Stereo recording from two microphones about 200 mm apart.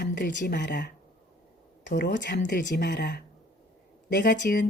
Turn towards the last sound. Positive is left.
turn(degrees=60)  # may be behind; listen again after turning